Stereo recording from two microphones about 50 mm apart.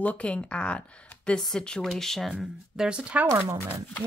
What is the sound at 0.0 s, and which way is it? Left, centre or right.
Speech, left.